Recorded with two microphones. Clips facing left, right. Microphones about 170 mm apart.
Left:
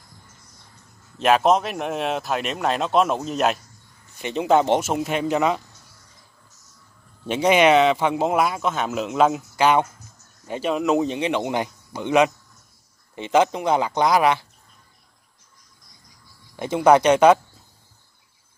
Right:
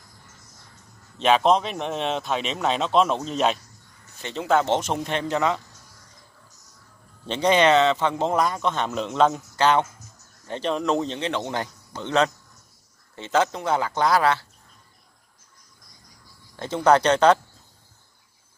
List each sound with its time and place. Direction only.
1.1 s speech: 5° left (ahead or behind)
4.2 s speech: 15° left (ahead or behind)
7.2 s speech: 10° left (ahead or behind)
16.5 s speech: 10° left (ahead or behind)